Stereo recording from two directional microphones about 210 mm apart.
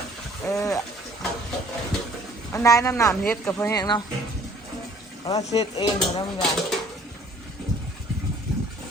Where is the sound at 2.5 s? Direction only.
15° left (ahead or behind).